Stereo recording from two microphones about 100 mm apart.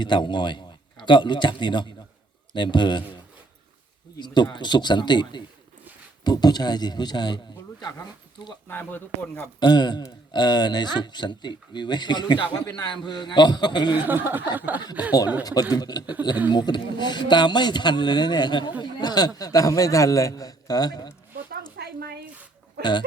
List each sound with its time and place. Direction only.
0.0 s a man's voice: 50° left (ahead or behind)
4.2 s a man's voice: 45° left (ahead or behind)
8.6 s speech: 20° left (ahead or behind)
9.6 s a man's voice: 45° left (ahead or behind)
14.1 s speech: 20° right (ahead or behind)
15.4 s a man's voice: 40° left (ahead or behind)
22.8 s a man's voice: 50° left (ahead or behind)